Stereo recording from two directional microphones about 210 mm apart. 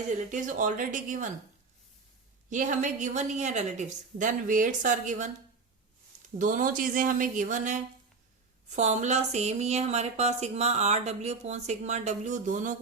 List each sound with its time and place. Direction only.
0.1 s speech: 35° right (ahead or behind)
2.5 s speech: 35° right (ahead or behind)
6.4 s speech: 40° right (ahead or behind)